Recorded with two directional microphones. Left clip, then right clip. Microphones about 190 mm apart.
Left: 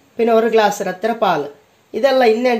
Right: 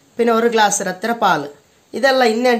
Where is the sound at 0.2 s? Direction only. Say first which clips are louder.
Left 1 dB; 25° right (ahead or behind).